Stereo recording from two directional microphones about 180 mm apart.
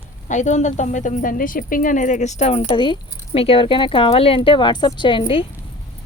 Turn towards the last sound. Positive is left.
turn(degrees=30)  # may be behind; listen again after turning